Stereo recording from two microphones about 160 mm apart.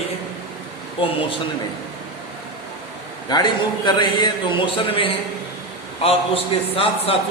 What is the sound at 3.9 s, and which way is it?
A man's voice, 25° left (ahead or behind).